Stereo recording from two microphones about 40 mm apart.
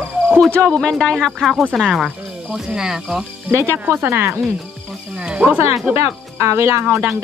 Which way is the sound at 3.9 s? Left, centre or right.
Right.